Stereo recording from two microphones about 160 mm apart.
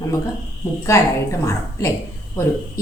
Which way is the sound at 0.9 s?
20° left (ahead or behind).